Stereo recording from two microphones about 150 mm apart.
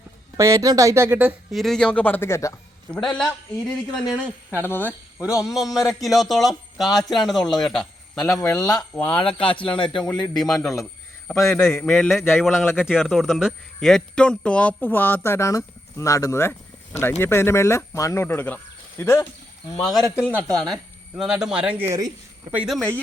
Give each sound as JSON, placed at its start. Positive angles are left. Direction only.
{"t": 0.3, "sound": "speech", "side_deg": -20}
{"t": 1.5, "sound": "speech", "side_deg": 0}
{"t": 2.9, "sound": "a man's voice", "side_deg": 5}
{"t": 4.6, "sound": "speech", "side_deg": 15}
{"t": 5.4, "sound": "a man's voice", "side_deg": 0}
{"t": 8.4, "sound": "speech", "side_deg": 20}
{"t": 9.1, "sound": "a man's voice", "side_deg": 35}
{"t": 10.0, "sound": "a man's voice", "side_deg": 5}
{"t": 19.8, "sound": "a man's voice", "side_deg": 0}
{"t": 21.8, "sound": "speech", "side_deg": -20}
{"t": 22.5, "sound": "a man's voice", "side_deg": 0}